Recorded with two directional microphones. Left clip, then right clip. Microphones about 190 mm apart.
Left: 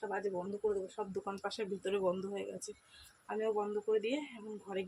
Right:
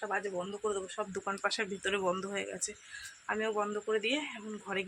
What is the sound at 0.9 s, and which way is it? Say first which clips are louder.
Speech: right 4 dB; 5° right (ahead or behind).